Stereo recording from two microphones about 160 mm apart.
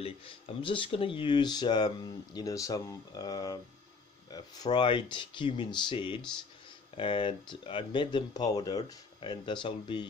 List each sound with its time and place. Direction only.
0.0 s speech: 35° left (ahead or behind)